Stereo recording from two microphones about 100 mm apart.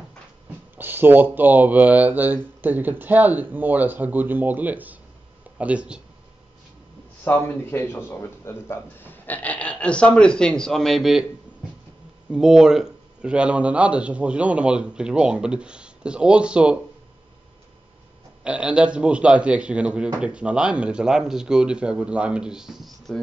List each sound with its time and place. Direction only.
0.7 s a man's voice: 20° right (ahead or behind)
7.2 s a man's voice: 20° left (ahead or behind); by 11.2 s centre (ahead or behind)
12.3 s a man's voice: 5° right (ahead or behind)
18.4 s a man's voice: 10° right (ahead or behind)